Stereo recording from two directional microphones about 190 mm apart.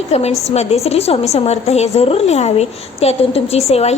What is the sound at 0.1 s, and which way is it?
A woman's voice, 35° left (ahead or behind).